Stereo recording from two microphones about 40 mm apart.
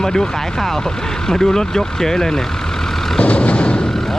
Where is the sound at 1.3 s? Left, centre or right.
Centre.